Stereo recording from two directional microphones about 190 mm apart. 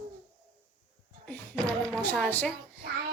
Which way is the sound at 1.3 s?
5° left (ahead or behind).